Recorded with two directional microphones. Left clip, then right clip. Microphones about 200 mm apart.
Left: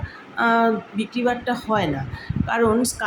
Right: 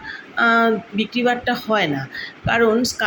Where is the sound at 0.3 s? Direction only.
5° left (ahead or behind).